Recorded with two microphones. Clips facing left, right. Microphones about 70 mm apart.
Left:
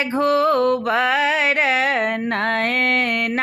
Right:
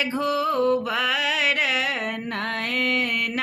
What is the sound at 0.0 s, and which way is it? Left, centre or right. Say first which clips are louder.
Mantra: left 5 dB; left.